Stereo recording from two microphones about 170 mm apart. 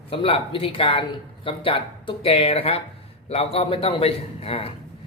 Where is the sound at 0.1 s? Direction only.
30° left (ahead or behind).